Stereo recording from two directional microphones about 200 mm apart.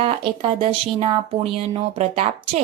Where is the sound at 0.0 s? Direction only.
25° right (ahead or behind).